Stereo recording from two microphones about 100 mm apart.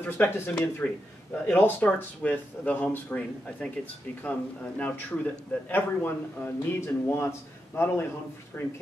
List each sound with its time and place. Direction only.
0.0 s a man's voice: 20° left (ahead or behind)
4.2 s a man's voice: 15° left (ahead or behind)